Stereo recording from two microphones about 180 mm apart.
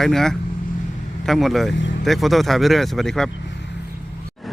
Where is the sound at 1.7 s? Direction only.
90° left.